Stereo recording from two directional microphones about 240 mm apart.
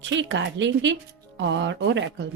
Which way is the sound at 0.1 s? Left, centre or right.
Right.